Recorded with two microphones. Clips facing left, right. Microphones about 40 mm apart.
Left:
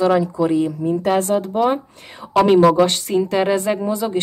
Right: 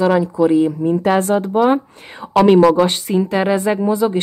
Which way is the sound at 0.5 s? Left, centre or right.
Right.